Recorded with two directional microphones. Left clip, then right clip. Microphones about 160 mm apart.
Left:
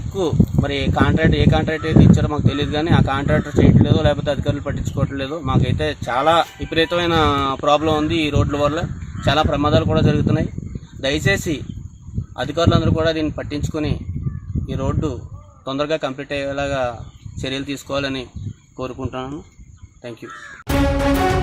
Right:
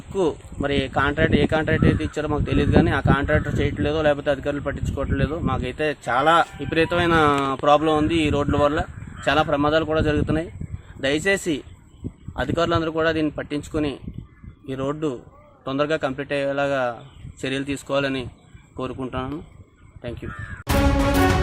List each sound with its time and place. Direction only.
0.2 s a man's voice: 15° right (ahead or behind)